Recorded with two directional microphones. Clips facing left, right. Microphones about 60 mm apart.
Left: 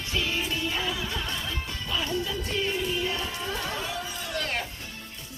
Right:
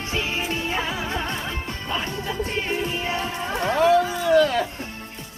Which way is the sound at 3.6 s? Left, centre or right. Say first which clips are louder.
Right 15 dB; right.